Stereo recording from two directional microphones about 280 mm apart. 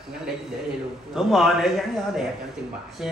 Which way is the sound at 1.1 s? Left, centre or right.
Centre.